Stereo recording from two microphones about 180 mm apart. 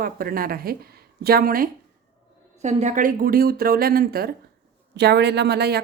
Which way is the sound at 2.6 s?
40° right (ahead or behind).